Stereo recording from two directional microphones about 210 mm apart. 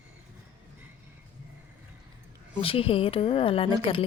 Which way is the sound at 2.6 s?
25° left (ahead or behind).